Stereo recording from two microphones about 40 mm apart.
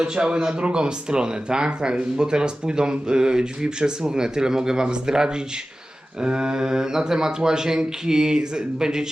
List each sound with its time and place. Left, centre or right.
0.0 s speech: right